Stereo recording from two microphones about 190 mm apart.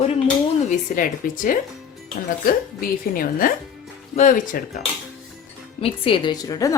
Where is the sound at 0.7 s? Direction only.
45° left (ahead or behind).